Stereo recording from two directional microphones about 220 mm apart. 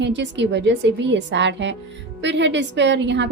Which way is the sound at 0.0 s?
55° right (ahead or behind).